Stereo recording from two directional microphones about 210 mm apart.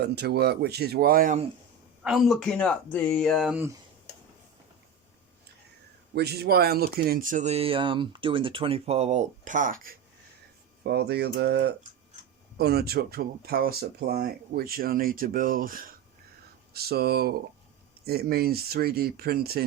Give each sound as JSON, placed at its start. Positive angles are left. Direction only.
{"t": 0.0, "sound": "speech", "side_deg": -50}
{"t": 2.0, "sound": "speech", "side_deg": 0}
{"t": 6.1, "sound": "speech", "side_deg": -50}
{"t": 10.8, "sound": "speech", "side_deg": -50}